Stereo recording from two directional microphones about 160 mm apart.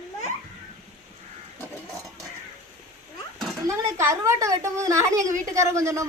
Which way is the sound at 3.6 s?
15° right (ahead or behind).